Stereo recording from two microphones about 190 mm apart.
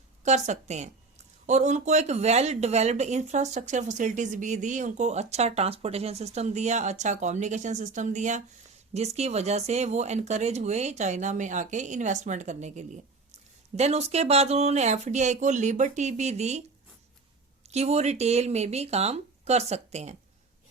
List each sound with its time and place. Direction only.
0.3 s speech: 40° right (ahead or behind)
17.7 s speech: 35° right (ahead or behind)